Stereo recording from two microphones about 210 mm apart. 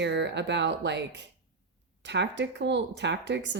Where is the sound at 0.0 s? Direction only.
55° right (ahead or behind).